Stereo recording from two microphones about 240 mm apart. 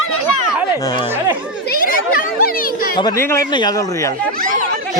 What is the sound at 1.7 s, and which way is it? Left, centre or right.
Children playing, left.